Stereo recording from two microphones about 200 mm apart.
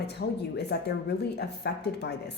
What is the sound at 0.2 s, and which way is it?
Speech, 55° left (ahead or behind).